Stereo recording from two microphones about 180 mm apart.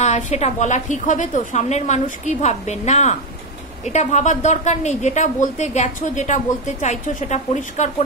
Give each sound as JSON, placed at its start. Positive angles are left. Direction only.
{"t": 0.0, "sound": "speech", "side_deg": 40}